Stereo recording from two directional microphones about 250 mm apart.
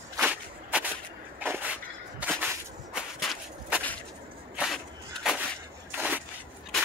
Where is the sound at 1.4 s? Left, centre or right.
Centre.